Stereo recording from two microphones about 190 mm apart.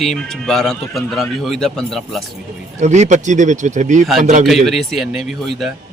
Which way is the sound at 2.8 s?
35° right (ahead or behind).